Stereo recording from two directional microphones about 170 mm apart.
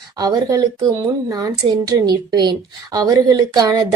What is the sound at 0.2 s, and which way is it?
A woman's voice, 20° right (ahead or behind).